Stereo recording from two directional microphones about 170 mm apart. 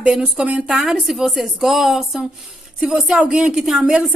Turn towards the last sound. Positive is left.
turn(degrees=-5)  # may be behind; listen again after turning